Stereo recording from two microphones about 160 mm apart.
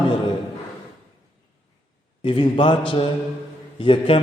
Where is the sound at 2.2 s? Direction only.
30° left (ahead or behind).